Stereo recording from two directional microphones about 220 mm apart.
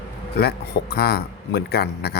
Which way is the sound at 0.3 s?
45° left (ahead or behind).